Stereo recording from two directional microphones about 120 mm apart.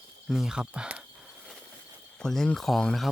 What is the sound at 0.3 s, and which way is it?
Speech, 5° right (ahead or behind).